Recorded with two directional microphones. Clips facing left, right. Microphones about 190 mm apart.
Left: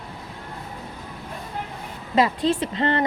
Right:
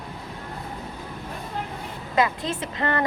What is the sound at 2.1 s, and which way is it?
Speech, 30° left (ahead or behind).